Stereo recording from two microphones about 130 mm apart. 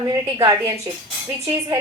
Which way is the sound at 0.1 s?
30° right (ahead or behind).